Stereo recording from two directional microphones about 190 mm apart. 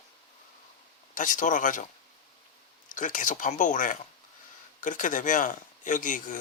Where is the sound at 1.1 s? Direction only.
45° left (ahead or behind).